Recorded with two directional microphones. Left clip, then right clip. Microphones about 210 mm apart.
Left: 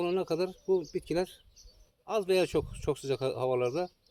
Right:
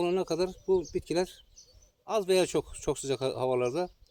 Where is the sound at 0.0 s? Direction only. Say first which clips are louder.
Right 2 dB; 25° right (ahead or behind).